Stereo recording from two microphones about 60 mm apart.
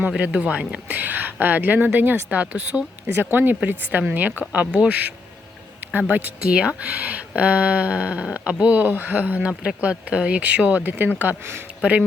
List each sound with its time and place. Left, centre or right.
0.2 s speech: centre
2.4 s speech: right
3.2 s speech: right; by 5.1 s centre
5.8 s speech: right
6.5 s speech: centre; by 11.6 s right
11.8 s speech: right